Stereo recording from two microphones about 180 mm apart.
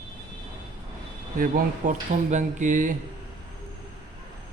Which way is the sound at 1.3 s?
45° right (ahead or behind).